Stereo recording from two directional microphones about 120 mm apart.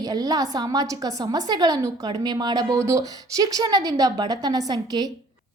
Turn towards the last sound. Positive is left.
turn(degrees=-35)  # may be behind; listen again after turning